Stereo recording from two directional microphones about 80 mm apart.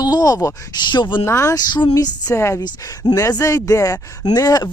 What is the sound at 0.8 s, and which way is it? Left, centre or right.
Speech, left.